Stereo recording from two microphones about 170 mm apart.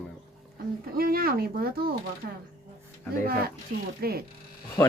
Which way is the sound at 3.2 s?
60° right (ahead or behind).